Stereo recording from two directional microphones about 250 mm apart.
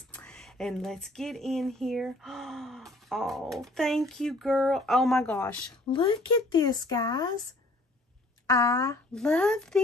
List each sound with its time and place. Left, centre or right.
0.1 s speech: centre
5.9 s speech: centre
8.5 s speech: centre